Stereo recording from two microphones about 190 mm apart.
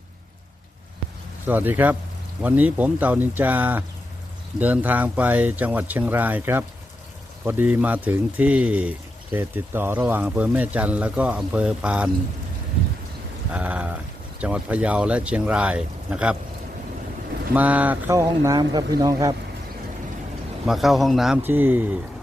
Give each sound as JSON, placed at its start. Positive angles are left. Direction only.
{"t": 1.5, "sound": "speech", "side_deg": -10}
{"t": 13.5, "sound": "speech", "side_deg": -5}
{"t": 17.5, "sound": "speech", "side_deg": -5}
{"t": 20.7, "sound": "speech", "side_deg": 0}